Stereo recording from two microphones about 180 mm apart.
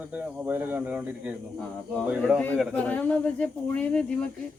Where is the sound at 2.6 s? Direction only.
5° left (ahead or behind).